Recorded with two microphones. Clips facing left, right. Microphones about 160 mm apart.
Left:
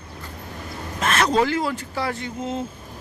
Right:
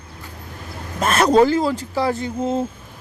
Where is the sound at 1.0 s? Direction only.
40° right (ahead or behind).